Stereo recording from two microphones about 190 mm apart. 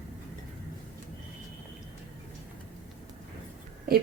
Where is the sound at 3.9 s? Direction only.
55° right (ahead or behind).